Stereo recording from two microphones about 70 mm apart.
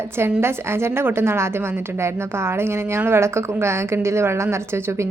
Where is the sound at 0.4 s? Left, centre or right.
Right.